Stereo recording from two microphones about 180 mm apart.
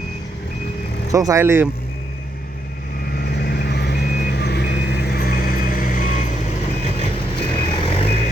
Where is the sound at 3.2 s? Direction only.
65° left (ahead or behind); by 6.2 s 45° left (ahead or behind).